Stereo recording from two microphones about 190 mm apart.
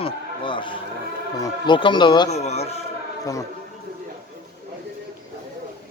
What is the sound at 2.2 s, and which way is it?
Speech, 35° left (ahead or behind).